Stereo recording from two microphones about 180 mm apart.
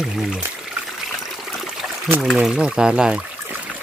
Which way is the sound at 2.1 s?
5° right (ahead or behind).